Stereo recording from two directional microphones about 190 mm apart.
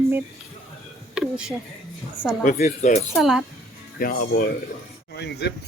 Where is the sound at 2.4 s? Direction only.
45° left (ahead or behind).